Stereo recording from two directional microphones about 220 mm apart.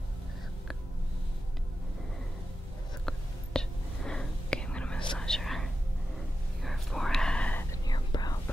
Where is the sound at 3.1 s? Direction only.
5° left (ahead or behind).